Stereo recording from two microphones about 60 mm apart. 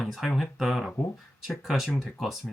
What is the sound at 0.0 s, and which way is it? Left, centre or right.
Speech, centre.